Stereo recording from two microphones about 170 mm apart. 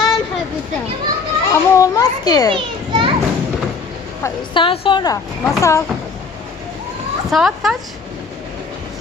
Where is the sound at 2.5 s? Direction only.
30° right (ahead or behind).